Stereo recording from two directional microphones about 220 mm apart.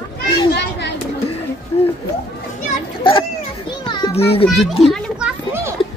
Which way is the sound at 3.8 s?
20° left (ahead or behind).